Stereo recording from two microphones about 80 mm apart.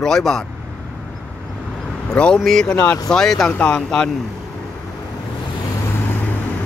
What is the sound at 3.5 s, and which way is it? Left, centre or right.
Speech, left.